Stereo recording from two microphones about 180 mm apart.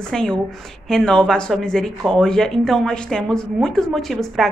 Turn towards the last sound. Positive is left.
turn(degrees=0)  # may be behind; listen again after turning